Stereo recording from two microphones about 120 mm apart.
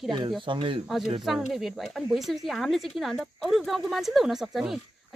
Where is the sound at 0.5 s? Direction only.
45° right (ahead or behind).